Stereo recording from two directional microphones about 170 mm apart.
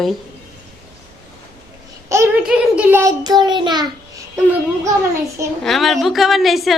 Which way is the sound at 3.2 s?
25° right (ahead or behind).